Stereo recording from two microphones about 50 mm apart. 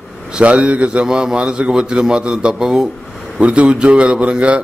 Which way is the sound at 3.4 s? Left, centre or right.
Right.